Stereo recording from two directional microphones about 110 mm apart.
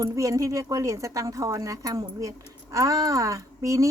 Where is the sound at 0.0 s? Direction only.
30° right (ahead or behind).